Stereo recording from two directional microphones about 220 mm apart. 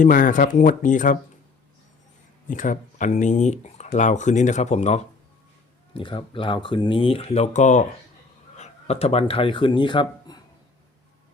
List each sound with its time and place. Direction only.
0.0 s speech: 35° left (ahead or behind)
2.5 s speech: 35° left (ahead or behind)
5.9 s speech: 20° left (ahead or behind)